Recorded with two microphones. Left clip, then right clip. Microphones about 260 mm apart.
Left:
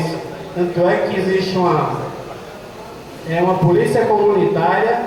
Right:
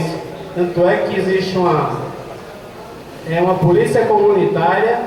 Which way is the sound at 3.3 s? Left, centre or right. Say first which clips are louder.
Right 1 dB; centre.